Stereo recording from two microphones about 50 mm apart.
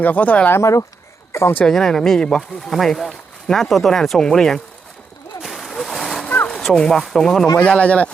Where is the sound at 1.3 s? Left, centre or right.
Left.